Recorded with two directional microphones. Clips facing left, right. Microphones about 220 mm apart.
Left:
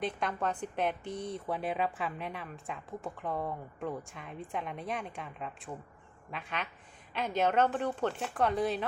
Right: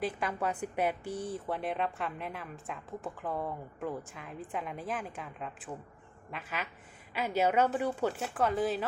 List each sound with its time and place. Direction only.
0.0 s a woman's voice: 5° right (ahead or behind)